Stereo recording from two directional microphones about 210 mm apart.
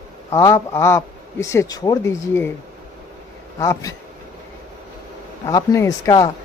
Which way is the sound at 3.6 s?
15° left (ahead or behind).